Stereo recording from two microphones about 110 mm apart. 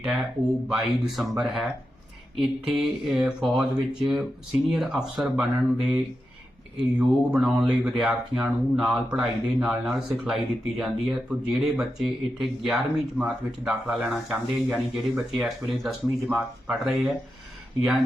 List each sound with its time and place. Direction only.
0.0 s speech: centre (ahead or behind)
7.0 s speech: 5° right (ahead or behind)
16.0 s speech: 20° right (ahead or behind)
16.6 s speech: 5° right (ahead or behind)